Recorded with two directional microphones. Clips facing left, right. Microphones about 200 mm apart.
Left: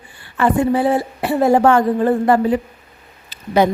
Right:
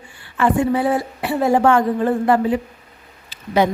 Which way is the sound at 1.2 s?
40° left (ahead or behind).